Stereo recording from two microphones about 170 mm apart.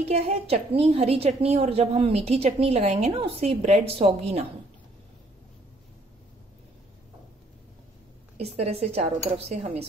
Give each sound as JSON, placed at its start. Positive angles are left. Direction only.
{"t": 0.0, "sound": "a woman's voice", "side_deg": -35}
{"t": 8.4, "sound": "a woman's voice", "side_deg": -35}